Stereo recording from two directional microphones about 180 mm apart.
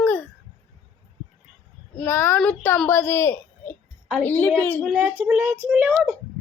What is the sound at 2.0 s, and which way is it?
A woman's voice, 15° left (ahead or behind).